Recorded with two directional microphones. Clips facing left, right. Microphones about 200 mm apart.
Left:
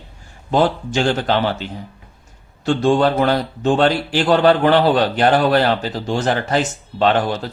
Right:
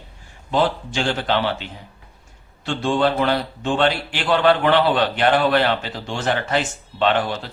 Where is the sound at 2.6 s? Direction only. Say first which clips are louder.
Left 5 dB; 45° left (ahead or behind).